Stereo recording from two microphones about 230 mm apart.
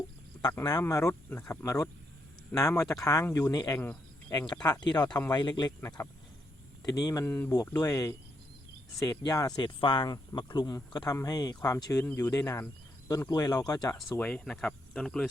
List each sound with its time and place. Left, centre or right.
0.4 s speech: centre